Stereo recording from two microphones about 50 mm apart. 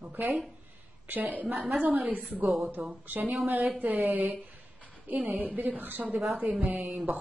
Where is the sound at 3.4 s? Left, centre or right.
Right.